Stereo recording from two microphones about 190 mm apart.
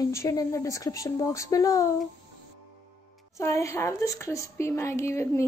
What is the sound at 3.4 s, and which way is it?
A woman's voice, 15° left (ahead or behind).